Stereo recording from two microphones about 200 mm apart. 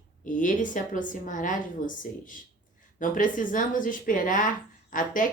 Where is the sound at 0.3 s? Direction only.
40° left (ahead or behind).